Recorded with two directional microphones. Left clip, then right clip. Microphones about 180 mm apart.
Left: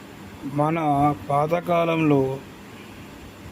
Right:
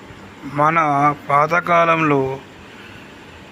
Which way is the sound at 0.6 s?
15° left (ahead or behind).